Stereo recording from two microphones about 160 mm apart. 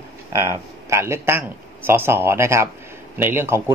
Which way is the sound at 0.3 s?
15° right (ahead or behind).